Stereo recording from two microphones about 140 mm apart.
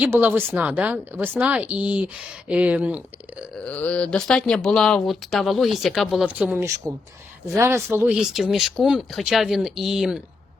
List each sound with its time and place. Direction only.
0.0 s a woman's voice: 15° right (ahead or behind)
3.6 s a woman's voice: 10° left (ahead or behind); by 8.1 s 15° right (ahead or behind)
8.1 s speech: 5° right (ahead or behind)